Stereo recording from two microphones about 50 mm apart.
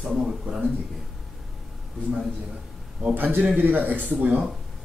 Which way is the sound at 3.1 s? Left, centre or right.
Right.